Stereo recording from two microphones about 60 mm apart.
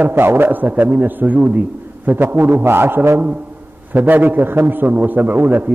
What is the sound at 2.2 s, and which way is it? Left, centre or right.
A man's voice, right.